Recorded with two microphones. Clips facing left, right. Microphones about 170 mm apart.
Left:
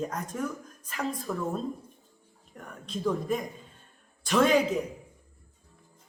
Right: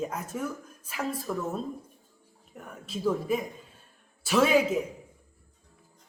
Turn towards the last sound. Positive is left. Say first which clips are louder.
# even
turn(degrees=-5)  # may be behind; listen again after turning